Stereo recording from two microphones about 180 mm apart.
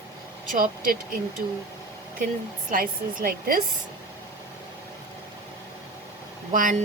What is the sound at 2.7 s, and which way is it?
Speech, 50° right (ahead or behind).